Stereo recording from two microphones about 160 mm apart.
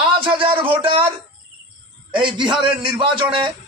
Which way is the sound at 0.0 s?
35° right (ahead or behind).